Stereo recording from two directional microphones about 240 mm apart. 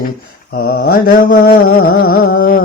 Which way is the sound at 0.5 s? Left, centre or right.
Left.